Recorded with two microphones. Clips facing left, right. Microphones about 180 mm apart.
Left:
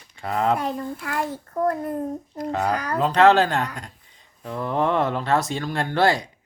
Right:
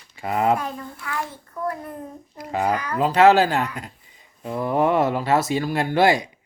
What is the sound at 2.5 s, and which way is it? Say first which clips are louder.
Speech: right 1 dB; 10° right (ahead or behind).